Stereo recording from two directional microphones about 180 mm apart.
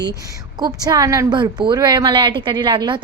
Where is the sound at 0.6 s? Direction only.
20° right (ahead or behind).